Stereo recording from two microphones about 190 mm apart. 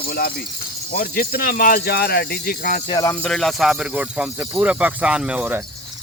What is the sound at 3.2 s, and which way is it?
Speech, centre (ahead or behind).